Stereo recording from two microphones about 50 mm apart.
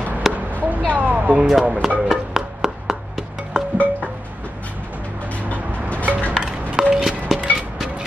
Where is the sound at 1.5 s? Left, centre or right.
Centre.